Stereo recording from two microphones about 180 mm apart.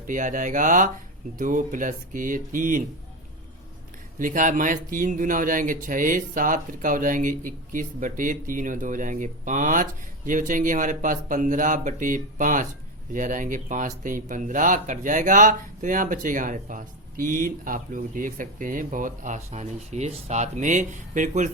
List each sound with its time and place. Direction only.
0.1 s speech: 45° right (ahead or behind)
4.2 s speech: 50° right (ahead or behind)